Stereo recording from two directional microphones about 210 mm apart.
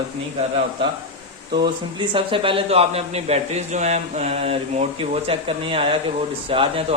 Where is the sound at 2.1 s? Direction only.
25° right (ahead or behind).